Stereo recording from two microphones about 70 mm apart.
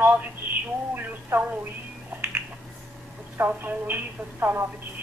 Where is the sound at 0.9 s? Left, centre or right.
Right.